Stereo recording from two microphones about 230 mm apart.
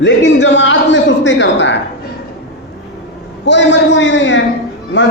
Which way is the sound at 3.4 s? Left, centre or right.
Left.